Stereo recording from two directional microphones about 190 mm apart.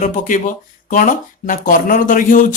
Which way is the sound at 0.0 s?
40° left (ahead or behind).